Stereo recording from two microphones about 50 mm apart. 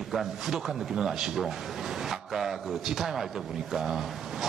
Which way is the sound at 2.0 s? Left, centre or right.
Centre.